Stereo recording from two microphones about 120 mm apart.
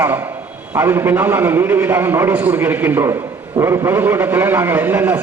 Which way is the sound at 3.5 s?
30° right (ahead or behind).